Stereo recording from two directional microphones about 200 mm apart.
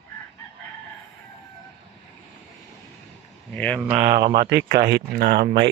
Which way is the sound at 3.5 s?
5° left (ahead or behind).